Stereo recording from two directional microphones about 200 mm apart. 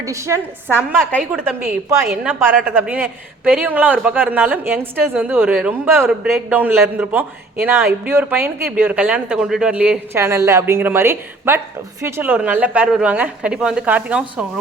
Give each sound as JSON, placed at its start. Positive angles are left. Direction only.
{"t": 0.0, "sound": "a woman's voice", "side_deg": -15}